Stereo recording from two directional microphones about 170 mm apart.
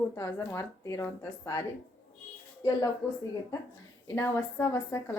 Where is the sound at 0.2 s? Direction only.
15° left (ahead or behind).